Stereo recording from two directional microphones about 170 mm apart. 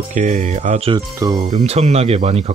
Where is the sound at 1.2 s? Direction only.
20° right (ahead or behind).